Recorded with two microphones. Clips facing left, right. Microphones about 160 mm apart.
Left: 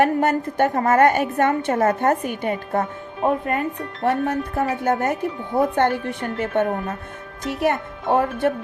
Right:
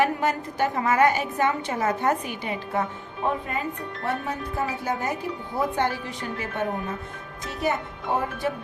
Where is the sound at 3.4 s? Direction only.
60° left (ahead or behind).